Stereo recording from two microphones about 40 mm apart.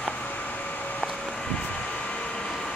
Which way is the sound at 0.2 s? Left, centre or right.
Left.